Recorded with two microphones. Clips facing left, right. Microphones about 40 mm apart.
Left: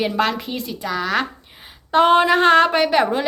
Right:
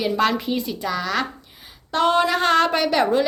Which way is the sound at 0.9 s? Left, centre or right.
Centre.